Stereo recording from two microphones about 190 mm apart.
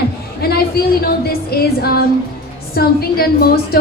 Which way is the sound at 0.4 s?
55° left (ahead or behind).